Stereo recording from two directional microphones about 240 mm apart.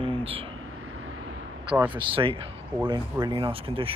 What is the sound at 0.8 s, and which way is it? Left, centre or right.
Vehicle, right.